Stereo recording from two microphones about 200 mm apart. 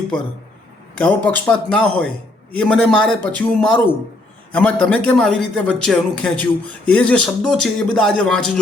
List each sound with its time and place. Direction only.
0.9 s a man's voice: 5° left (ahead or behind)